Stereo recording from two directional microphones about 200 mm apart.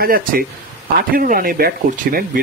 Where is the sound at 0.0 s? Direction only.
45° right (ahead or behind).